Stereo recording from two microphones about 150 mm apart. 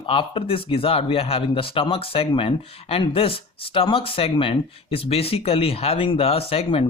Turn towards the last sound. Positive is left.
turn(degrees=40)  # may be behind; listen again after turning